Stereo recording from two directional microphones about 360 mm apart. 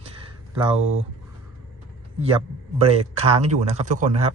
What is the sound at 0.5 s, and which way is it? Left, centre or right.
Speech, centre.